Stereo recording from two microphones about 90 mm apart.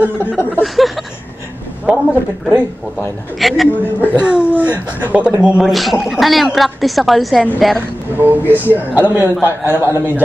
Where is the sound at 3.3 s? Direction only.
Centre (ahead or behind).